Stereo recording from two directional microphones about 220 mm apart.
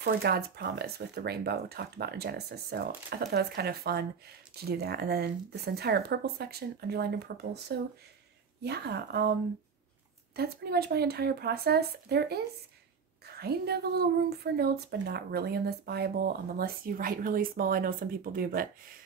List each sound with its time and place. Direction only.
0.0 s speech: 45° right (ahead or behind)
10.3 s speech: 45° right (ahead or behind)
13.4 s speech: 45° right (ahead or behind)